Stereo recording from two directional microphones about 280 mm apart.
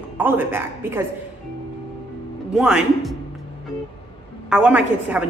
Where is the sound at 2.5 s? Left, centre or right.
Centre.